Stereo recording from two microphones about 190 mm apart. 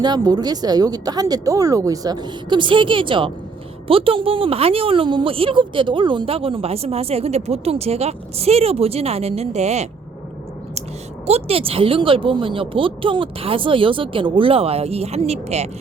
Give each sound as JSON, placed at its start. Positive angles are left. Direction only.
{"t": 0.0, "sound": "a woman's voice", "side_deg": -20}
{"t": 11.3, "sound": "speech", "side_deg": -35}